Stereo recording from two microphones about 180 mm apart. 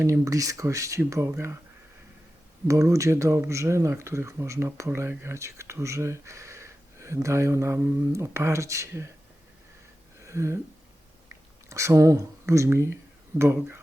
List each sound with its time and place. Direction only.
0.0 s speech: 15° right (ahead or behind)
2.6 s speech: 15° right (ahead or behind)
10.2 s a sound: 15° right (ahead or behind)
11.7 s speech: 15° right (ahead or behind)